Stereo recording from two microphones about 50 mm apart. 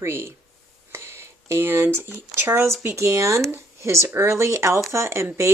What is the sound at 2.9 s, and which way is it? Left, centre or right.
Speech, right.